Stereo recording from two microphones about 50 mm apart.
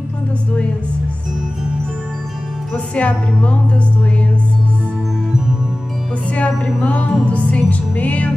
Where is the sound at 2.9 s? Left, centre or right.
Left.